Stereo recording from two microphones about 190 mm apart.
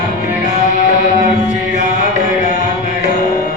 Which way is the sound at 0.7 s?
40° left (ahead or behind).